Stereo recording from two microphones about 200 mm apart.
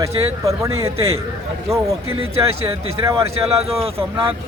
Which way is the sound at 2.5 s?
30° right (ahead or behind).